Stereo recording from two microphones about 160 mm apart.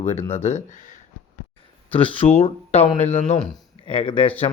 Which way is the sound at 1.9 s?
35° left (ahead or behind).